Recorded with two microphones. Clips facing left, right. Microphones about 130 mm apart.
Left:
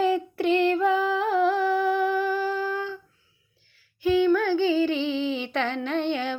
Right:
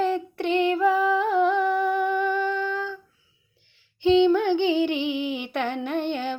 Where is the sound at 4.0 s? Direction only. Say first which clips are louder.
Right 3 dB; 25° right (ahead or behind).